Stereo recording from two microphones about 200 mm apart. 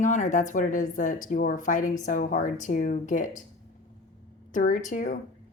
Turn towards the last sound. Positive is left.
turn(degrees=40)  # may be behind; listen again after turning